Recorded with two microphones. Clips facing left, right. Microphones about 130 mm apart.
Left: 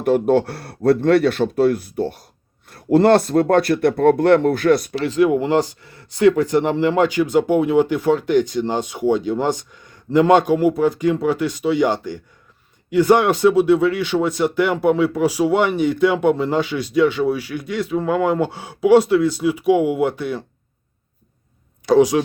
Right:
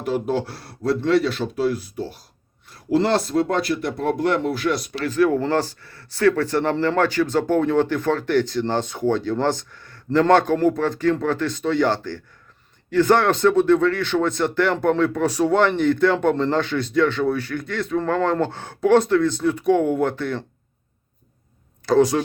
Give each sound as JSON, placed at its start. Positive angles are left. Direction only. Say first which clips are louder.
{"t": 0.0, "sound": "speech", "louder": "left 7 dB", "side_deg": 55}
{"t": 4.9, "sound": "speech", "louder": "left 3 dB", "side_deg": 20}
{"t": 21.8, "sound": "speech", "louder": "left 3 dB", "side_deg": 10}